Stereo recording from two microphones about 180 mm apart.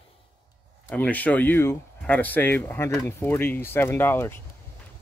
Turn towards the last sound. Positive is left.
turn(degrees=10)  # may be behind; listen again after turning